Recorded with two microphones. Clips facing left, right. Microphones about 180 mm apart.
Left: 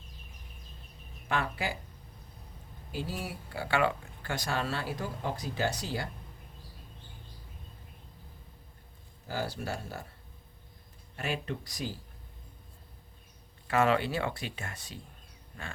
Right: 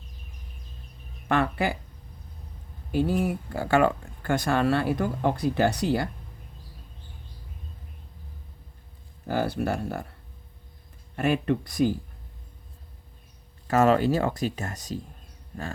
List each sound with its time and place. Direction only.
1.3 s speech: 60° right (ahead or behind)
2.9 s speech: 55° right (ahead or behind)
9.2 s speech: 60° right (ahead or behind)
11.2 s speech: 60° right (ahead or behind)
13.7 s speech: 40° right (ahead or behind)
15.5 s a sound: 45° right (ahead or behind)